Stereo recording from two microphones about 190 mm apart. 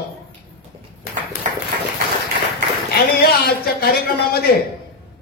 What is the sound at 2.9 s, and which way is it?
A man's voice, 55° left (ahead or behind).